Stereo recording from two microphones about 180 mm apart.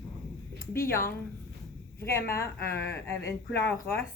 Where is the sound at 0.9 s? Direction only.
15° left (ahead or behind).